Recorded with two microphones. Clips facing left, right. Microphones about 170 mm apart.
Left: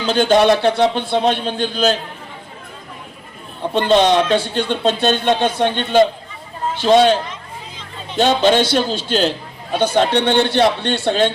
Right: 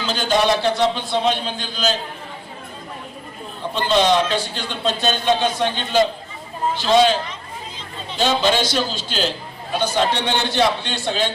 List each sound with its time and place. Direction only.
0.0 s a man's voice: 55° left (ahead or behind)
3.8 s a man's voice: 60° left (ahead or behind)